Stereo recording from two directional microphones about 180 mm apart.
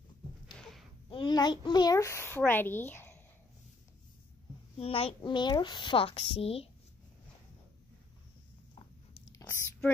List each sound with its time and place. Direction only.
1.1 s a child's voice: 25° left (ahead or behind)
4.7 s a woman's voice: 30° left (ahead or behind)
9.4 s a sound: 10° left (ahead or behind)